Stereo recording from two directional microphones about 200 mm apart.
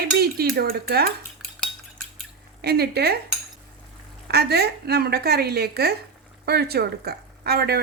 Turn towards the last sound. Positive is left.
turn(degrees=-50)  # may be behind; listen again after turning